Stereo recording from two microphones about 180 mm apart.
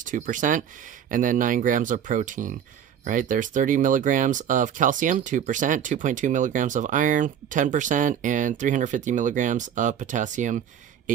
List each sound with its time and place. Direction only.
0.0 s speech: 45° right (ahead or behind)